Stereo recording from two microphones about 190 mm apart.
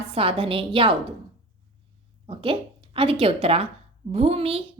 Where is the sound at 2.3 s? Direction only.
25° right (ahead or behind).